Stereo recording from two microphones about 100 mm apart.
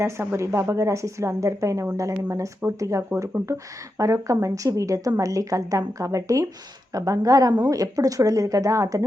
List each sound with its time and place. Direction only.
0.0 s speech: 25° right (ahead or behind)